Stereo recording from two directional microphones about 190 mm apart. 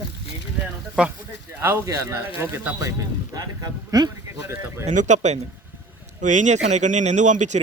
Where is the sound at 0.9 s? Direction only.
10° right (ahead or behind).